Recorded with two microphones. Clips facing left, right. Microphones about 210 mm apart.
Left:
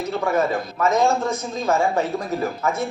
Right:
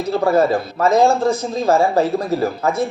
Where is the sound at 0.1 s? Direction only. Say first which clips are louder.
Right 7 dB; 35° right (ahead or behind).